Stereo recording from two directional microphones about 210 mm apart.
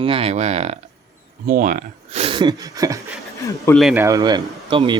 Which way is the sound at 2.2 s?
25° right (ahead or behind).